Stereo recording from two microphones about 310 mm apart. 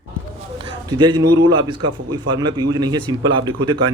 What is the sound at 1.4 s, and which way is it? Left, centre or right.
A man's voice, centre.